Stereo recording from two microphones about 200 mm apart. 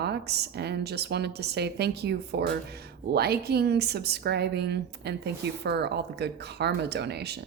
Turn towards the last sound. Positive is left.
turn(degrees=-55)  # may be behind; listen again after turning